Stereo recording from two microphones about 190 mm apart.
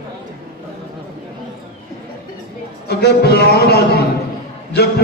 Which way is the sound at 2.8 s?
60° left (ahead or behind).